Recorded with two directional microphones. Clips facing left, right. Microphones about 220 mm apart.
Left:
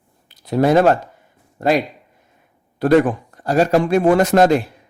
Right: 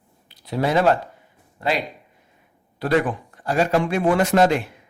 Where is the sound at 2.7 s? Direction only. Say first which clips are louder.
Left 7 dB; 45° left (ahead or behind).